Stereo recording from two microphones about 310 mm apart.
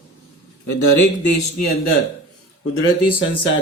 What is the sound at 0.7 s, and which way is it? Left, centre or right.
Speech, left.